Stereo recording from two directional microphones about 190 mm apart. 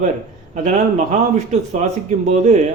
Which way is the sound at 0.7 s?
35° right (ahead or behind).